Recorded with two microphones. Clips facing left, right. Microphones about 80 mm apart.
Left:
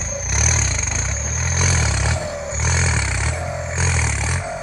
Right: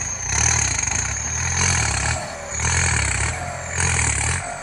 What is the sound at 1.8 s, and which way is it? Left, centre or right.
Roar, centre.